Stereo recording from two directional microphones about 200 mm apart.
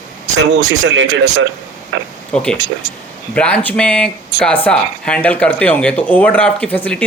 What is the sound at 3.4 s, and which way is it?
Speech, 5° left (ahead or behind).